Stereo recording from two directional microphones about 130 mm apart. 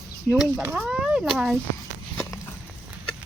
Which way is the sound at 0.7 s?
10° right (ahead or behind).